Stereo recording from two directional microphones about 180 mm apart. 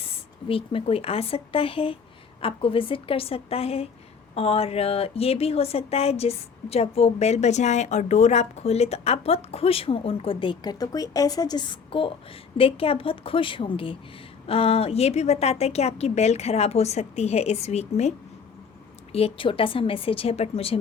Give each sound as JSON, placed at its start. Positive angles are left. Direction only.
{"t": 0.4, "sound": "speech", "side_deg": 30}
{"t": 19.1, "sound": "speech", "side_deg": 30}